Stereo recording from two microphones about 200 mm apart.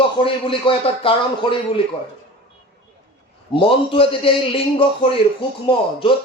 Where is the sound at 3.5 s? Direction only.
25° left (ahead or behind).